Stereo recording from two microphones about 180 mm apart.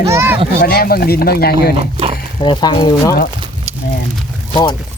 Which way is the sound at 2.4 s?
25° left (ahead or behind).